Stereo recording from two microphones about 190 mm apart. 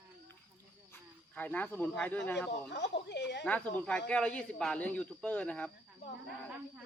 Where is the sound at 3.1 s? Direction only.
65° left (ahead or behind).